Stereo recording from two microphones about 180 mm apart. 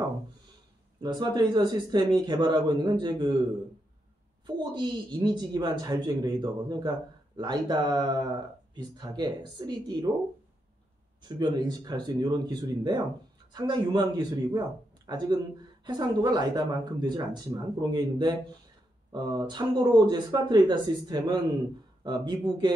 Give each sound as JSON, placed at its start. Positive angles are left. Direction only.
{"t": 1.0, "sound": "speech", "side_deg": -25}
{"t": 4.5, "sound": "speech", "side_deg": -25}
{"t": 11.2, "sound": "speech", "side_deg": -25}